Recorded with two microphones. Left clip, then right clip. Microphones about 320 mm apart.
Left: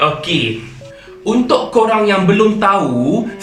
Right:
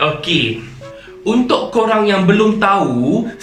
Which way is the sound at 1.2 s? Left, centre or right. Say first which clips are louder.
Left 1 dB; centre.